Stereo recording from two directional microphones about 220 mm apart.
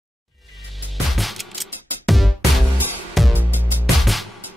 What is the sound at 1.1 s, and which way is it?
Music, centre (ahead or behind).